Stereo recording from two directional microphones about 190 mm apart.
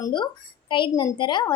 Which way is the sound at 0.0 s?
25° left (ahead or behind).